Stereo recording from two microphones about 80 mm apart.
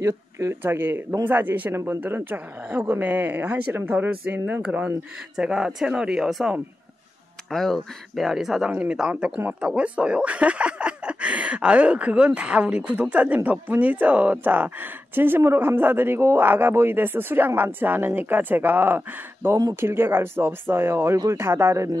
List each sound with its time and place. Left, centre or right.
0.0 s speech: right; by 6.5 s centre
7.5 s speech: centre; by 21.9 s right